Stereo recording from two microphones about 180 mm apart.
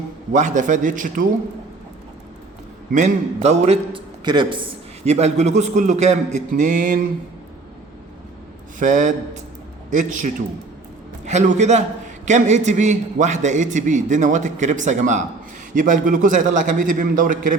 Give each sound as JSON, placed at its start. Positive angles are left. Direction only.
{"t": 0.3, "sound": "a man's voice", "side_deg": -45}
{"t": 2.9, "sound": "a man's voice", "side_deg": -40}
{"t": 5.0, "sound": "a man's voice", "side_deg": -35}
{"t": 8.8, "sound": "a man's voice", "side_deg": -45}